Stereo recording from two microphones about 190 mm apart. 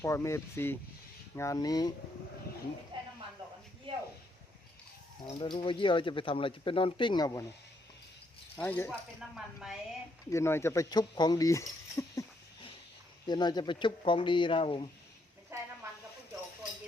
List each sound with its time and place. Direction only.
0.0 s speech: 15° left (ahead or behind)
3.9 s a sound: 25° right (ahead or behind)
5.4 s speech: 25° left (ahead or behind)
8.5 s speech: 10° left (ahead or behind)
8.9 s speech: 5° right (ahead or behind)
10.2 s speech: 15° left (ahead or behind)
13.2 s speech: 25° left (ahead or behind)
15.5 s a sound: 15° right (ahead or behind)